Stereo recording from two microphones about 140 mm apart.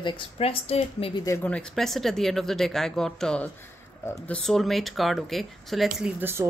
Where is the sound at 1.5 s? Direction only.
5° left (ahead or behind).